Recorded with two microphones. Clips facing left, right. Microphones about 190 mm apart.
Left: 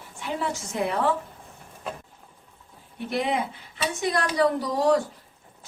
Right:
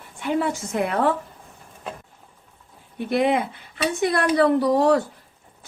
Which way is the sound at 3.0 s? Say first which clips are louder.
Right 6 dB; 60° right (ahead or behind).